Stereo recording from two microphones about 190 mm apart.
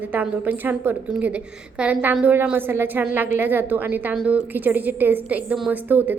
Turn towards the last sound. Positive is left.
turn(degrees=-10)  # may be behind; listen again after turning